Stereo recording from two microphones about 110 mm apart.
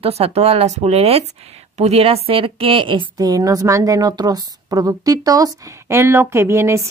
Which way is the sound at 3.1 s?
35° right (ahead or behind).